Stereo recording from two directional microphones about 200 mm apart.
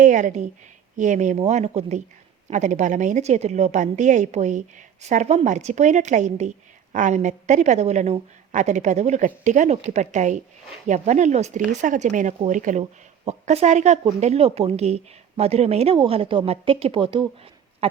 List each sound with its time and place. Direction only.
0.0 s speech: 40° right (ahead or behind)